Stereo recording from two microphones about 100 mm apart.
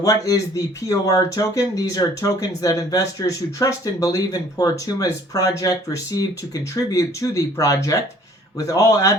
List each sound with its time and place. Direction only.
0.0 s speech: 35° left (ahead or behind)